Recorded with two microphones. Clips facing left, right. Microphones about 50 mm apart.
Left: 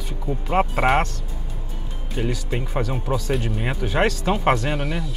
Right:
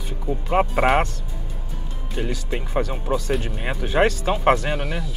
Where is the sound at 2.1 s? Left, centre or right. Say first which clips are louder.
Left 1 dB; centre.